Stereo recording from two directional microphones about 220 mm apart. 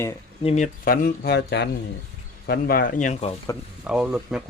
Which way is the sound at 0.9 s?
45° left (ahead or behind).